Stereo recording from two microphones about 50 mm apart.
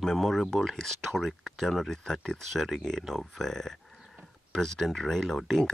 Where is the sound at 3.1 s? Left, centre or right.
Centre.